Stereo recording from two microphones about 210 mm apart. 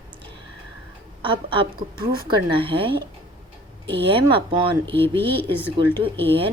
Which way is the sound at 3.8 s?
55° right (ahead or behind).